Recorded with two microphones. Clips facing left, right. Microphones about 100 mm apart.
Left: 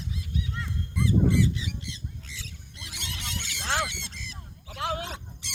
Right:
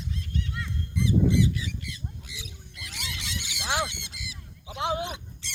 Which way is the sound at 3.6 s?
15° right (ahead or behind).